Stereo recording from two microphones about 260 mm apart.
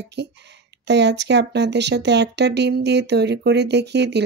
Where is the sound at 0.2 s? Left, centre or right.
Right.